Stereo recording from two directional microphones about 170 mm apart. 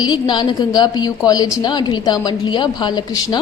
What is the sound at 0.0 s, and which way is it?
A woman's voice, 25° left (ahead or behind).